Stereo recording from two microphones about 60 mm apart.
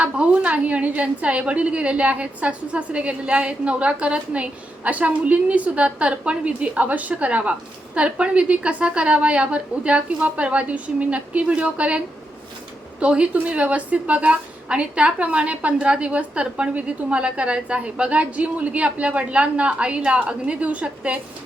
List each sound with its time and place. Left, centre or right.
0.0 s a woman's voice: right